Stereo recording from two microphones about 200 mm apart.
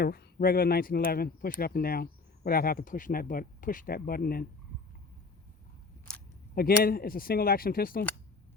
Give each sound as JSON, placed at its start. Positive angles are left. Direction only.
{"t": 0.0, "sound": "speech", "side_deg": 50}
{"t": 6.5, "sound": "speech", "side_deg": 50}